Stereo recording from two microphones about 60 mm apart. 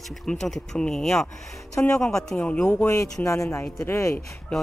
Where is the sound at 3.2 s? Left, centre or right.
Left.